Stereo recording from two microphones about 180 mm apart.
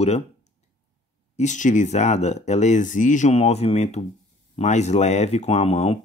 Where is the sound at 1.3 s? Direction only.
40° left (ahead or behind).